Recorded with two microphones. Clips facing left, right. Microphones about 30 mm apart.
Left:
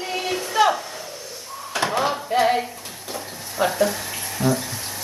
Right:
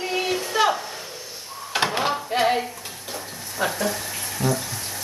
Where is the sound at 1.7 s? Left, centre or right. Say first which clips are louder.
Even; right.